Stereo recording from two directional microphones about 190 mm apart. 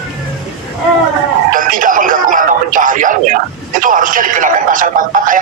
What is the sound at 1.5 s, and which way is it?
Speech, 45° right (ahead or behind).